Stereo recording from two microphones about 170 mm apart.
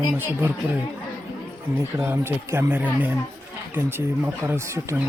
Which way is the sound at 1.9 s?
15° right (ahead or behind).